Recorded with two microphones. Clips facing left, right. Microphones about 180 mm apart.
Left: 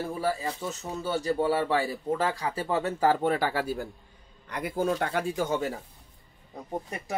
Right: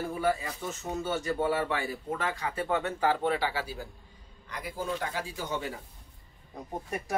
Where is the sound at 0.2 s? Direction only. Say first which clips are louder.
Right 1 dB; 35° left (ahead or behind); by 5.7 s 50° left (ahead or behind).